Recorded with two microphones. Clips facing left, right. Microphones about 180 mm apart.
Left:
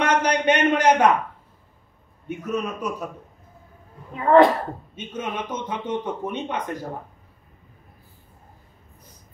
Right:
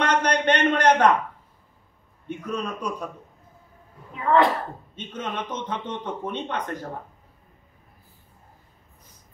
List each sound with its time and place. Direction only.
0.0 s a sound: 10° left (ahead or behind)
2.2 s speech: 5° left (ahead or behind)
4.2 s speech: 40° left (ahead or behind)
4.9 s speech: 10° left (ahead or behind)